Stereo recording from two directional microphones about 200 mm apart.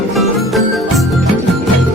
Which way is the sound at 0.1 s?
Centre (ahead or behind).